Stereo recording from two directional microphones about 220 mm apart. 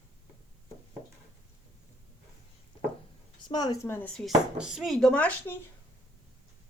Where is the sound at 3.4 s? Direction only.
20° left (ahead or behind).